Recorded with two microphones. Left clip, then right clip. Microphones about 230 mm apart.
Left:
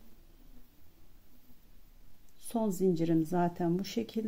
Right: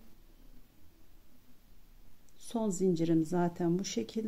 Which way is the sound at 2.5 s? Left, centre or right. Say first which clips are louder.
Left 1 dB; centre.